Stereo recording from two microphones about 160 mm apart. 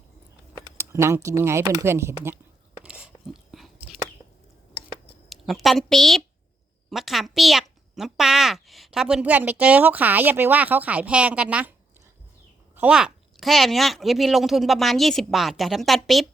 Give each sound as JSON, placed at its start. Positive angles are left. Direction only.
{"t": 0.8, "sound": "speech", "side_deg": -15}
{"t": 2.8, "sound": "a sound", "side_deg": -5}
{"t": 5.3, "sound": "a woman's voice", "side_deg": 0}
{"t": 12.7, "sound": "speech", "side_deg": -10}